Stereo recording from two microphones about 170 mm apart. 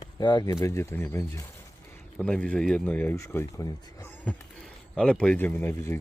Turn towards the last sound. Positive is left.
turn(degrees=15)  # may be behind; listen again after turning